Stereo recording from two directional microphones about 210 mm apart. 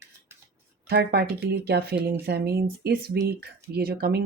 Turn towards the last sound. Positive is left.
turn(degrees=-50)  # may be behind; listen again after turning